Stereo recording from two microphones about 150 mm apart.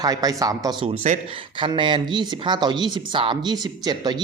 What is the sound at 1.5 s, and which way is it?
Speech, 30° right (ahead or behind).